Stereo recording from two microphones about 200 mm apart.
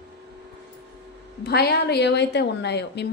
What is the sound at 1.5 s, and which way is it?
A woman's voice, 55° left (ahead or behind).